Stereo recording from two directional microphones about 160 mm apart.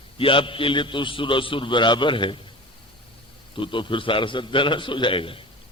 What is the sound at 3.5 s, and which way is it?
A man's voice, 30° left (ahead or behind).